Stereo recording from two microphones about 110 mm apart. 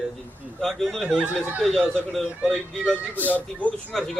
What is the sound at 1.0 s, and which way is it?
Speech, 15° right (ahead or behind).